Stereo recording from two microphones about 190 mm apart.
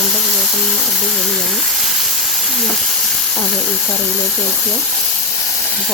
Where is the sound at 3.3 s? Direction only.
5° left (ahead or behind).